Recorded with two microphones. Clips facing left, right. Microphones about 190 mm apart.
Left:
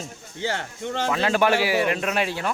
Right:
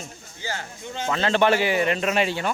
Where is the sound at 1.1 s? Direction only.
5° left (ahead or behind).